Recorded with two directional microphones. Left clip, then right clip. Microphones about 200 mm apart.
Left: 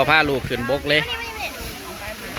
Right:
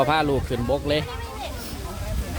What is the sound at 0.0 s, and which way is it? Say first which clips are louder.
Speech: left 4 dB; 5° right (ahead or behind).